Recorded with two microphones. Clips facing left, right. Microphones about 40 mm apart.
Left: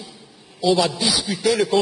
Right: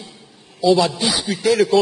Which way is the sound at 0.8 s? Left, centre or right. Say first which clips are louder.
Right 2 dB; centre.